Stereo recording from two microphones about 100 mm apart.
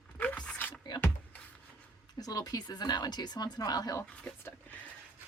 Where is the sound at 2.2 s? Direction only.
40° left (ahead or behind).